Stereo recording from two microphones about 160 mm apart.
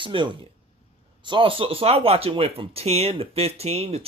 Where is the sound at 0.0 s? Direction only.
30° right (ahead or behind).